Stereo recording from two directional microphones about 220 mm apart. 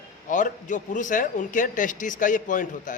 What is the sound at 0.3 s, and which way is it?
A man's voice, 35° left (ahead or behind).